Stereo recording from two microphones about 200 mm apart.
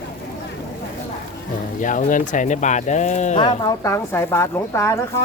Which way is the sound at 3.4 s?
20° left (ahead or behind).